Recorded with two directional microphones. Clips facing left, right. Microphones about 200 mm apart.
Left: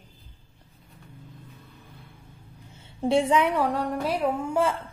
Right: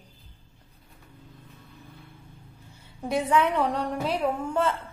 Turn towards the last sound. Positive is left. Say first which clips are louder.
# left 1 dB
turn(degrees=10)  # may be behind; listen again after turning